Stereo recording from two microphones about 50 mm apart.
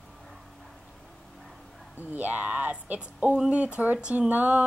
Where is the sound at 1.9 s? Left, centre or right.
Right.